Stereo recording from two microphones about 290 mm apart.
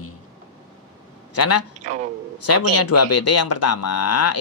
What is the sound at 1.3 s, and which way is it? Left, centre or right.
Speech, left.